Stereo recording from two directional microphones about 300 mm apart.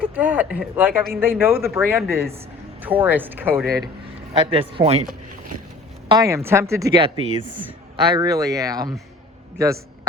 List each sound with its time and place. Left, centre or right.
0.0 s speech: centre
4.7 s speech: centre
6.1 s speech: centre
8.1 s a man's voice: centre